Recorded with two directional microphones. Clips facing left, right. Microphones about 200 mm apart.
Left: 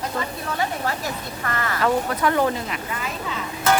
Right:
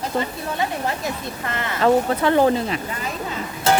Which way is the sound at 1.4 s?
20° right (ahead or behind).